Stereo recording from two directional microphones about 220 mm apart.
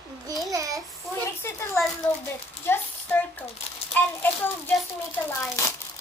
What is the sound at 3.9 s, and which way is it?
A child's voice, 10° left (ahead or behind).